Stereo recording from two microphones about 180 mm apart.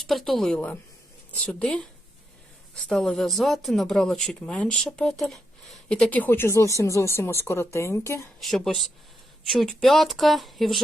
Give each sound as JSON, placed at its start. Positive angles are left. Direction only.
{"t": 0.0, "sound": "speech", "side_deg": 0}
{"t": 8.4, "sound": "speech", "side_deg": 0}